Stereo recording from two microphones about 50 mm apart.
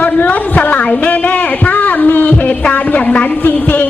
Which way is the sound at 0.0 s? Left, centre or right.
Left.